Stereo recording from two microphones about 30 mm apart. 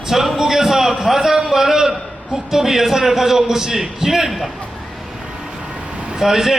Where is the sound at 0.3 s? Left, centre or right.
Centre.